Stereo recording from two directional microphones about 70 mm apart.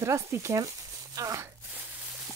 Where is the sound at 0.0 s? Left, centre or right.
Right.